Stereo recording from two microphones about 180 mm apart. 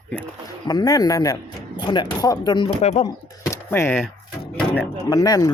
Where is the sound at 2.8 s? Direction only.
40° left (ahead or behind).